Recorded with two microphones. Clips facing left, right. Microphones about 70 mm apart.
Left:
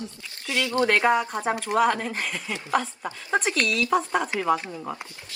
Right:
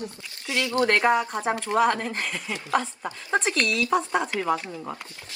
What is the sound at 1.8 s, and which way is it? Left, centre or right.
Music, centre.